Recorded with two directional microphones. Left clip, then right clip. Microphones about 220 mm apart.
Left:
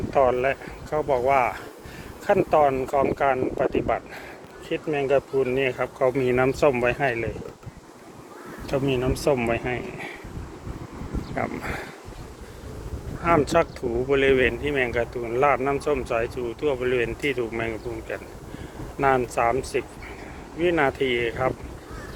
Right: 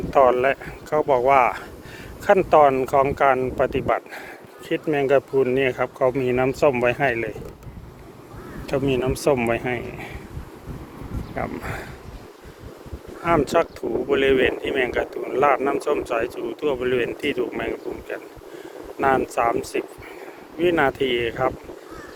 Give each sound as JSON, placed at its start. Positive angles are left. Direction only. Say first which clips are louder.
{"t": 0.1, "sound": "speech", "louder": "right 4 dB", "side_deg": -35}
{"t": 6.1, "sound": "speech", "louder": "left 1 dB", "side_deg": -10}
{"t": 8.6, "sound": "speech", "louder": "right 2 dB", "side_deg": -25}
{"t": 11.3, "sound": "speech", "louder": "even", "side_deg": -10}
{"t": 13.2, "sound": "speech", "louder": "right 1 dB", "side_deg": -15}